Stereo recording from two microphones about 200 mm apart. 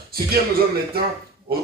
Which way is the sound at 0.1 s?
50° right (ahead or behind).